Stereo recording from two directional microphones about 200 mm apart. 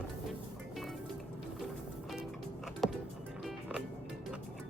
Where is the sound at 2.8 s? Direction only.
Centre (ahead or behind).